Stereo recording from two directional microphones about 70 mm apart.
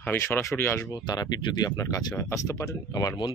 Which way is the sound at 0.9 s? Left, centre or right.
Left.